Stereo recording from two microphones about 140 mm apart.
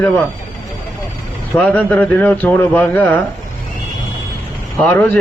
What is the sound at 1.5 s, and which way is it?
A man's voice, 10° left (ahead or behind).